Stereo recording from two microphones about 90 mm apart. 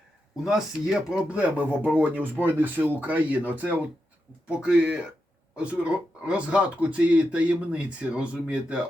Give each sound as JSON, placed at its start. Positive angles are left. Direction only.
{"t": 0.4, "sound": "speech", "side_deg": -5}